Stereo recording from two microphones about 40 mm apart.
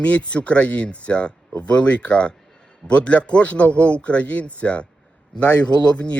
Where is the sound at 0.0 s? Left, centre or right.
Left.